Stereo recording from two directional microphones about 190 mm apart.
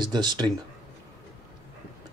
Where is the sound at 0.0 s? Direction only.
20° right (ahead or behind).